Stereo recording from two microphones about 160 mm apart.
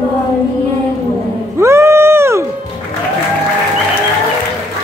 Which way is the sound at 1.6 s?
15° right (ahead or behind).